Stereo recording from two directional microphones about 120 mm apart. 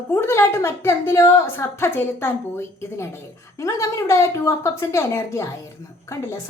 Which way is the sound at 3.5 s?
25° left (ahead or behind).